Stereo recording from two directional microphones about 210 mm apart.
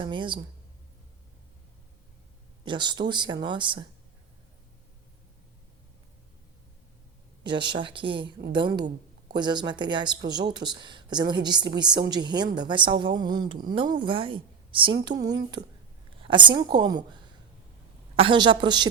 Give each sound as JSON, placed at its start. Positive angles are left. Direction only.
{"t": 0.0, "sound": "a woman's voice", "side_deg": -20}
{"t": 2.6, "sound": "a woman's voice", "side_deg": -20}
{"t": 7.4, "sound": "a woman's voice", "side_deg": -20}
{"t": 16.0, "sound": "a sound", "side_deg": -25}
{"t": 16.7, "sound": "a woman's voice", "side_deg": -20}
{"t": 18.2, "sound": "a woman's voice", "side_deg": -25}